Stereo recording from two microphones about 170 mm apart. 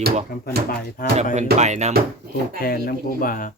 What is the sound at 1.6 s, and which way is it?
Speech, 45° right (ahead or behind).